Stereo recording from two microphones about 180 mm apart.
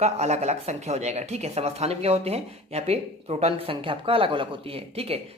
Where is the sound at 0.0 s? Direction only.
40° right (ahead or behind).